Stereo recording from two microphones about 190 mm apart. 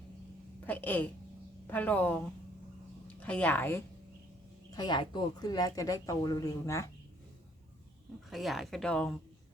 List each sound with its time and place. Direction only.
0.6 s a sound: 10° left (ahead or behind)
1.6 s a woman's voice: 10° left (ahead or behind)
4.7 s speech: 20° left (ahead or behind)
8.3 s speech: centre (ahead or behind)